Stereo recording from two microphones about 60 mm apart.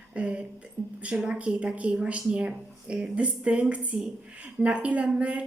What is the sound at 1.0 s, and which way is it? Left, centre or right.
A woman's voice, centre.